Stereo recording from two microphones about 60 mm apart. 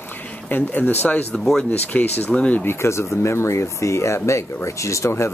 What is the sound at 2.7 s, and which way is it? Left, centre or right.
Speech, left.